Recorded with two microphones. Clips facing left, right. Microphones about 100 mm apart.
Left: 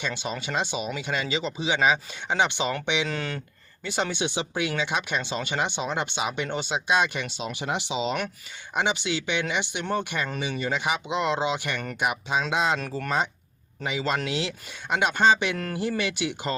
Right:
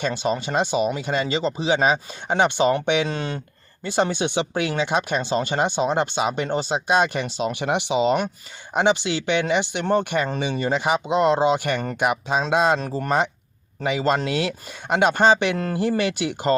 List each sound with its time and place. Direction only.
0.0 s speech: 45° right (ahead or behind)
0.5 s speech: 50° right (ahead or behind)
3.1 s speech: 25° right (ahead or behind)
3.8 s speech: 35° right (ahead or behind)
4.4 s speech: 55° right (ahead or behind)
4.8 s speech: 40° right (ahead or behind)
8.7 s speech: 45° right (ahead or behind)
10.5 s speech: 40° right (ahead or behind)
13.1 s speech: 65° right (ahead or behind)